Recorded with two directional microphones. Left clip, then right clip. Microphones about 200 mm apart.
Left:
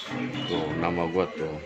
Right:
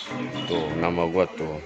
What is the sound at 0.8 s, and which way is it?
Speech, 30° right (ahead or behind).